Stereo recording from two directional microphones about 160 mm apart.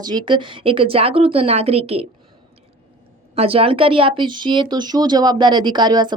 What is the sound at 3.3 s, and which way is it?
Speech, 35° right (ahead or behind).